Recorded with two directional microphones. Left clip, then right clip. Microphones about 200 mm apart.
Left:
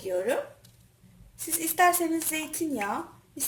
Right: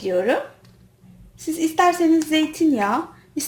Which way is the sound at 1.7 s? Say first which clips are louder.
Right 6 dB; 25° right (ahead or behind).